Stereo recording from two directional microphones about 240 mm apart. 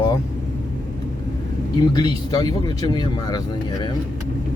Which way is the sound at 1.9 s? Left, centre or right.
Centre.